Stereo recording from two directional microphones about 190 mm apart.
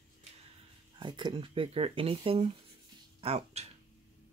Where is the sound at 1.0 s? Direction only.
25° right (ahead or behind).